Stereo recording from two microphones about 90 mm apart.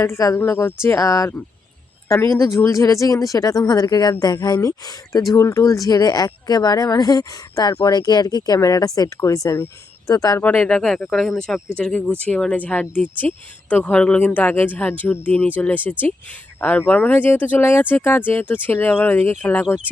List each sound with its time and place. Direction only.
0.0 s speech: 35° left (ahead or behind)
10.4 s speech: 20° left (ahead or behind)
10.7 s speech: 5° left (ahead or behind)
11.8 s speech: 15° left (ahead or behind)